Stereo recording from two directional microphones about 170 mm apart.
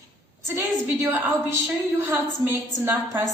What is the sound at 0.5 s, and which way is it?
A woman's voice, 10° right (ahead or behind).